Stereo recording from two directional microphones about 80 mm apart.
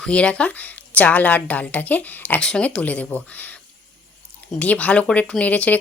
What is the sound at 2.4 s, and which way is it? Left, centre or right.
Speech, centre.